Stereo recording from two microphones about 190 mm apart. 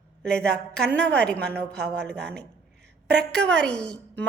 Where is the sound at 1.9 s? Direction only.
60° right (ahead or behind).